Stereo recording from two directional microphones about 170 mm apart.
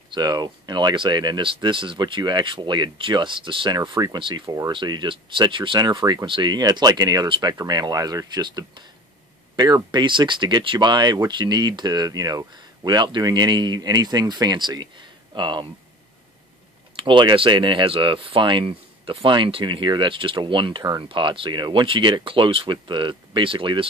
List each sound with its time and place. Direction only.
0.1 s speech: 25° right (ahead or behind)
16.9 s speech: 30° right (ahead or behind)